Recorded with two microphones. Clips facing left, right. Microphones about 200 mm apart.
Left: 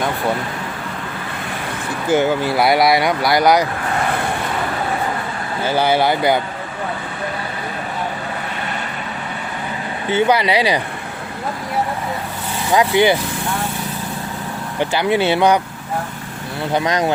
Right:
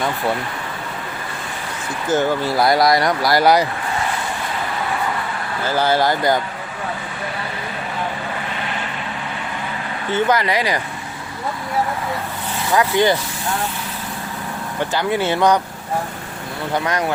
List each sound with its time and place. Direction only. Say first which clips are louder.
2.0 s speech: left 2 dB; 10° left (ahead or behind)
6.0 s speech: left 1 dB; 5° left (ahead or behind)
10.1 s speech: left 2 dB; 10° left (ahead or behind)
12.7 s speech: left 2 dB; 10° left (ahead or behind)
14.9 s speech: left 3 dB; 15° left (ahead or behind)
16.7 s speech: left 3 dB; 20° left (ahead or behind)